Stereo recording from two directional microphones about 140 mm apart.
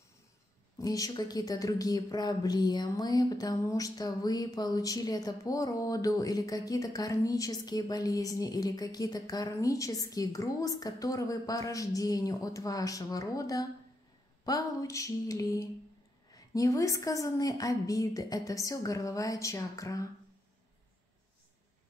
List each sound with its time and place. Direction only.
0.7 s speech: 25° left (ahead or behind)